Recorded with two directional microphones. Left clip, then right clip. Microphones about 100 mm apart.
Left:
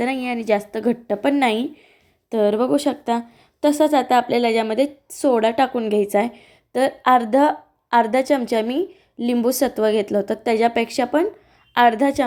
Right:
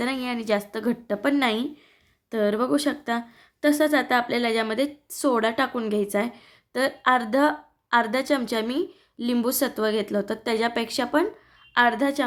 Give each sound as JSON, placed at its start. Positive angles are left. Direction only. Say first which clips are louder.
{"t": 0.0, "sound": "a woman's voice", "louder": "left 5 dB", "side_deg": 25}
{"t": 8.6, "sound": "a woman's voice", "louder": "left 4 dB", "side_deg": 20}
{"t": 9.4, "sound": "speech", "louder": "left 6 dB", "side_deg": 30}
{"t": 11.7, "sound": "speech", "louder": "left 5 dB", "side_deg": 40}